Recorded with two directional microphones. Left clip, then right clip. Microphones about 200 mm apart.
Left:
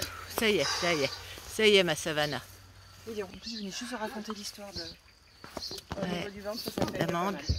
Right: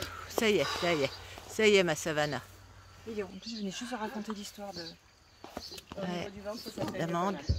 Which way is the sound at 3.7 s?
40° right (ahead or behind).